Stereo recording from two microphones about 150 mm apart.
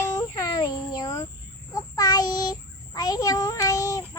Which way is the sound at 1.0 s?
25° left (ahead or behind).